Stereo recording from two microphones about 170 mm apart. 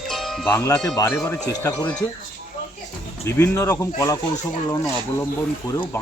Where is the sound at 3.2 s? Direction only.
15° left (ahead or behind).